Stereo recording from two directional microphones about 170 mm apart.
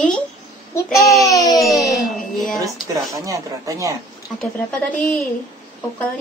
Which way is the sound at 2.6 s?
20° right (ahead or behind).